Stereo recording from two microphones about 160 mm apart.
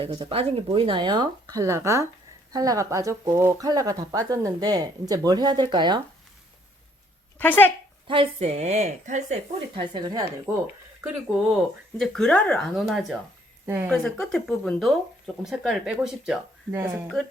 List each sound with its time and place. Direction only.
0.0 s speech: 35° right (ahead or behind)
7.3 s speech: 10° left (ahead or behind)
8.0 s a woman's voice: 35° right (ahead or behind)
9.7 s speech: 30° right (ahead or behind)
11.9 s speech: 5° left (ahead or behind)
13.7 s speech: 10° right (ahead or behind)
13.9 s speech: 5° left (ahead or behind)